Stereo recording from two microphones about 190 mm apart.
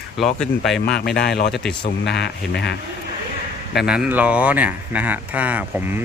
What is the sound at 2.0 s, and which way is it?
Speech, 65° left (ahead or behind).